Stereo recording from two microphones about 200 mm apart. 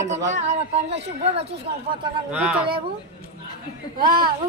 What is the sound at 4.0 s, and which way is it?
Speech, 20° right (ahead or behind).